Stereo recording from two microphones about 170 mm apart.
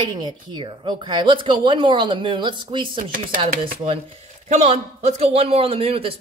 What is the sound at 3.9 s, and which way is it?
A man's voice, 40° right (ahead or behind).